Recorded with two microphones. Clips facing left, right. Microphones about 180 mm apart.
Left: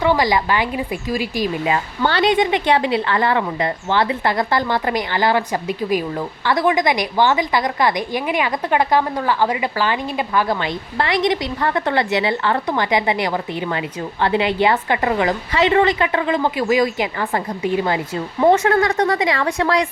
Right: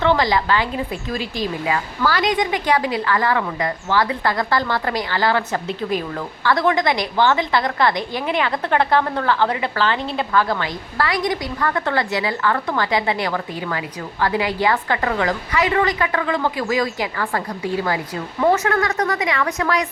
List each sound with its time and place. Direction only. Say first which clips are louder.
0.0 s a woman's voice: left 1 dB; 15° left (ahead or behind); by 19.9 s 30° left (ahead or behind)